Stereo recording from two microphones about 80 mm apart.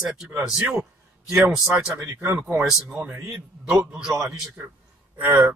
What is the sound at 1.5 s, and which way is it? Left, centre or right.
A man's voice, centre.